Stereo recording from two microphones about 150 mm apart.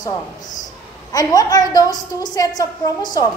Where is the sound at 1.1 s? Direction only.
25° left (ahead or behind).